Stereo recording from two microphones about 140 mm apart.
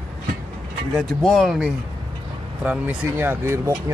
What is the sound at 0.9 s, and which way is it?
Speech, centre (ahead or behind).